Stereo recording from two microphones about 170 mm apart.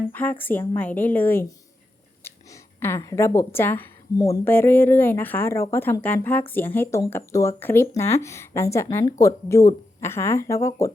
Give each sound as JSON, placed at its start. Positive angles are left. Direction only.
{"t": 0.1, "sound": "a woman's voice", "side_deg": 10}